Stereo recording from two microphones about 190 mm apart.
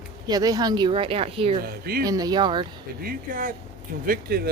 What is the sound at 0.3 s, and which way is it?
Speech, 20° right (ahead or behind).